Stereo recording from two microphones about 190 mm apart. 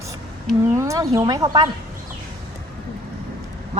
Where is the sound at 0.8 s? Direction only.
15° right (ahead or behind).